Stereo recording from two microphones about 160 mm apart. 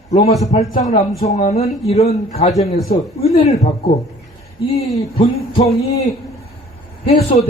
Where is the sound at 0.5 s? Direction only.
40° left (ahead or behind).